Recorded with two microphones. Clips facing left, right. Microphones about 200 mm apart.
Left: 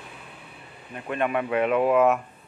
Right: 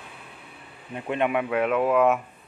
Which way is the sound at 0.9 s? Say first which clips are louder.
Right 2 dB; 20° right (ahead or behind).